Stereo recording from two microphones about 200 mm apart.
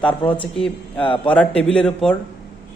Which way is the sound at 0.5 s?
5° left (ahead or behind).